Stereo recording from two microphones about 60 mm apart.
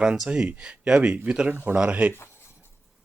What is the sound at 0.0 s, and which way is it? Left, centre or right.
Speech, centre.